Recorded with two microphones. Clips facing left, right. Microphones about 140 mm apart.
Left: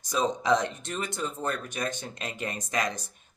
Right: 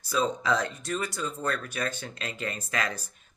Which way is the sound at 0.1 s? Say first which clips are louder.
Left 2 dB; 15° left (ahead or behind).